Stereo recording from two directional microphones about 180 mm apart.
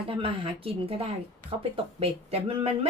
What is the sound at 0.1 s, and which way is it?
A woman's voice, 30° right (ahead or behind).